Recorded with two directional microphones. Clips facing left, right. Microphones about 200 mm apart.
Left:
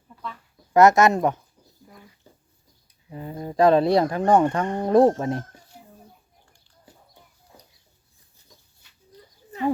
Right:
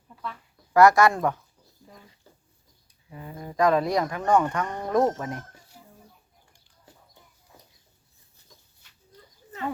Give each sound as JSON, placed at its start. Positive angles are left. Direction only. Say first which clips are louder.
{"t": 0.7, "sound": "speech", "louder": "left 2 dB", "side_deg": 20}
{"t": 2.3, "sound": "a sound", "louder": "left 2 dB", "side_deg": 15}
{"t": 3.1, "sound": "speech", "louder": "left 6 dB", "side_deg": 30}